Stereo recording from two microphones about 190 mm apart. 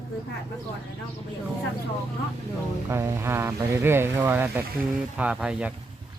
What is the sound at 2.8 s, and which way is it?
Speech, 15° right (ahead or behind).